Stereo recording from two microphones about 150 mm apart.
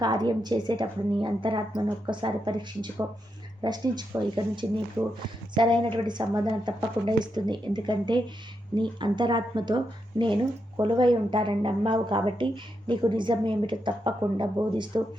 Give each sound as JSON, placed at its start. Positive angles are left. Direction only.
{"t": 0.0, "sound": "a woman's voice", "side_deg": -25}
{"t": 5.0, "sound": "speech", "side_deg": -10}
{"t": 5.5, "sound": "a woman's voice", "side_deg": -30}